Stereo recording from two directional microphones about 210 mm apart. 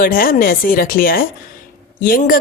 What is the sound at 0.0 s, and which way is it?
A woman's voice, 45° left (ahead or behind).